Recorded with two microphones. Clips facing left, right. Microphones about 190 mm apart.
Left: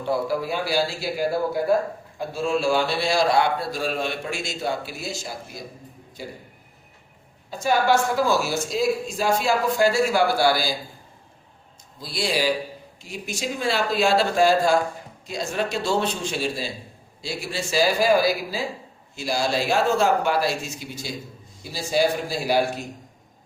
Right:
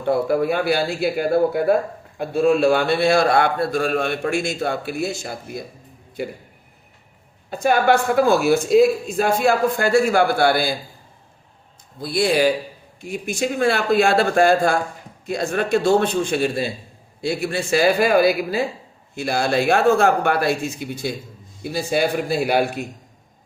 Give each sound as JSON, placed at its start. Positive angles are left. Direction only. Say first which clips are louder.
{"t": 0.0, "sound": "speech", "louder": "right 6 dB", "side_deg": -55}
{"t": 7.5, "sound": "speech", "louder": "right 3 dB", "side_deg": -60}
{"t": 11.9, "sound": "speech", "louder": "right 7 dB", "side_deg": -55}